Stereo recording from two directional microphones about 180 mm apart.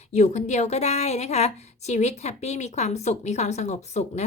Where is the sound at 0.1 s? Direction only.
40° left (ahead or behind).